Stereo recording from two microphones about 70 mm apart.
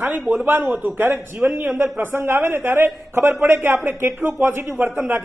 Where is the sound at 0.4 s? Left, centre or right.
Right.